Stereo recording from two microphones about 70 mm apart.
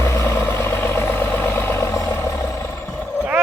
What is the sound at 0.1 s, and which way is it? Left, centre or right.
Vehicle, left.